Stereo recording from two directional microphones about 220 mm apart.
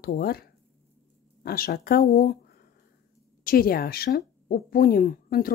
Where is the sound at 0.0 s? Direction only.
45° left (ahead or behind).